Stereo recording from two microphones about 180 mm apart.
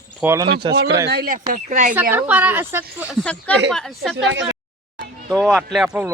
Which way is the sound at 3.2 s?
5° left (ahead or behind).